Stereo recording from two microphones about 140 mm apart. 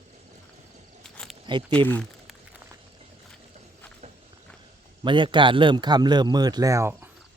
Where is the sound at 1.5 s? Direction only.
35° right (ahead or behind).